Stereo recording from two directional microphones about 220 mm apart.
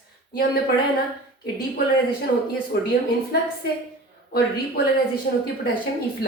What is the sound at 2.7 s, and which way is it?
Speech, 50° left (ahead or behind).